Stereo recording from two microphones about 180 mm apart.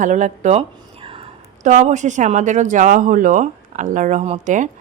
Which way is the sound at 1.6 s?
40° right (ahead or behind).